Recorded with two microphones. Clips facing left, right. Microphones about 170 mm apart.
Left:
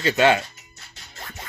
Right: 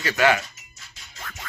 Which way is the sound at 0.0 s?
25° left (ahead or behind).